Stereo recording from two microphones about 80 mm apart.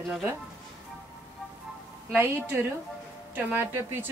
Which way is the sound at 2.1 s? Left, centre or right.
Right.